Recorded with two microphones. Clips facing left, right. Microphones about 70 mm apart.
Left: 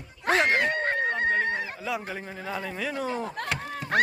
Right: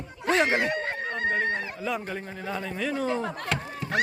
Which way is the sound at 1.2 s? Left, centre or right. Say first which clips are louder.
Left 1 dB; centre.